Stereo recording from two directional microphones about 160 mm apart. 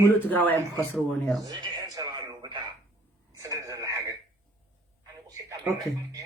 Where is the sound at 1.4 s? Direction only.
25° right (ahead or behind).